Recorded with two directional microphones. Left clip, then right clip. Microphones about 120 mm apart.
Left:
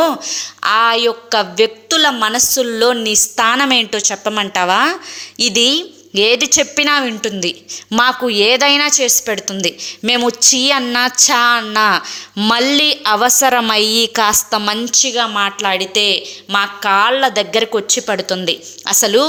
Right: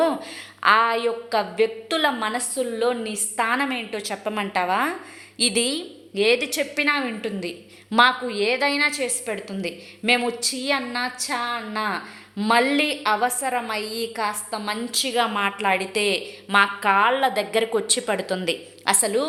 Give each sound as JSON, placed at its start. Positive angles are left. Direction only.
{"t": 0.0, "sound": "a woman's voice", "side_deg": 25}
{"t": 2.6, "sound": "a woman's voice", "side_deg": 50}
{"t": 3.4, "sound": "a woman's voice", "side_deg": 35}
{"t": 3.9, "sound": "a woman's voice", "side_deg": 25}
{"t": 4.2, "sound": "a woman's voice", "side_deg": 35}
{"t": 8.3, "sound": "a woman's voice", "side_deg": 55}
{"t": 14.8, "sound": "a woman's voice", "side_deg": 25}
{"t": 19.1, "sound": "a woman's voice", "side_deg": 45}